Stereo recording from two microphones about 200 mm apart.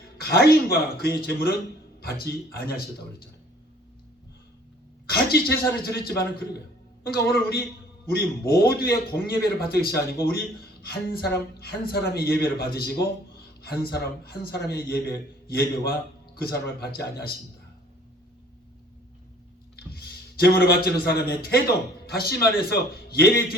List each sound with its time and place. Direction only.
0.2 s speech: 50° left (ahead or behind)
5.0 s a man's voice: 50° left (ahead or behind)
19.9 s a man's voice: 50° left (ahead or behind)